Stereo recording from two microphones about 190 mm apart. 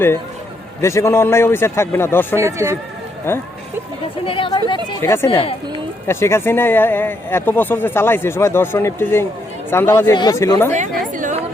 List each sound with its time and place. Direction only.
0.8 s speech: 15° left (ahead or behind)
2.4 s speech: 15° right (ahead or behind)
3.3 s speech: 10° left (ahead or behind)
4.3 s speech: 25° left (ahead or behind)
5.1 s speech: 15° left (ahead or behind)
10.7 s chatter: 40° right (ahead or behind)